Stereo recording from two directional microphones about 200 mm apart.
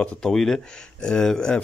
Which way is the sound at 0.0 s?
5° left (ahead or behind).